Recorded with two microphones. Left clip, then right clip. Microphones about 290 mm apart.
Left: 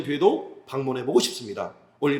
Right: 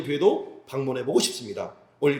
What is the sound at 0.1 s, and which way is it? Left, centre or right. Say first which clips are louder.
Speech: even; centre.